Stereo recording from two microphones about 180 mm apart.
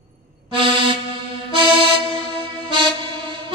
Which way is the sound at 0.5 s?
30° right (ahead or behind).